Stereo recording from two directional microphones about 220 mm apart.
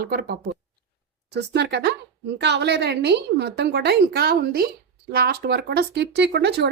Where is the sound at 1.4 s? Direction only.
50° right (ahead or behind).